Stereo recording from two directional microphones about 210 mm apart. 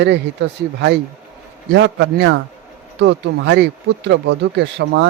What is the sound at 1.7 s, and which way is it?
Speech, 55° right (ahead or behind).